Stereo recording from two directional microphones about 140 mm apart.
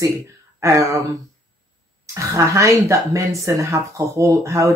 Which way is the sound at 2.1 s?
20° right (ahead or behind).